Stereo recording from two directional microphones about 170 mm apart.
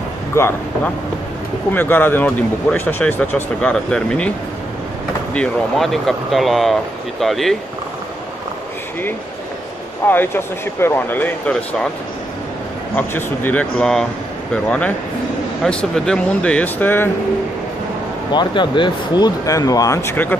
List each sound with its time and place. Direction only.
0.3 s speech: 15° left (ahead or behind)
1.7 s speech: 10° left (ahead or behind)
5.3 s speech: 5° left (ahead or behind)
10.0 s speech: 10° left (ahead or behind)
12.9 s speech: 10° left (ahead or behind)
18.3 s speech: 25° left (ahead or behind)